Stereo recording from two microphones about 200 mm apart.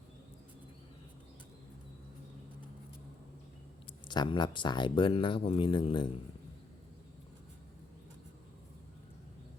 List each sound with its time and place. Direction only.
4.1 s speech: 20° left (ahead or behind)